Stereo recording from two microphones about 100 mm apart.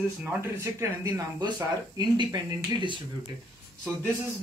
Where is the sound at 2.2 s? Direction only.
50° right (ahead or behind).